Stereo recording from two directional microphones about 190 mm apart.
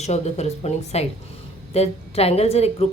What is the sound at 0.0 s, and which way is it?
A woman's voice, 35° left (ahead or behind).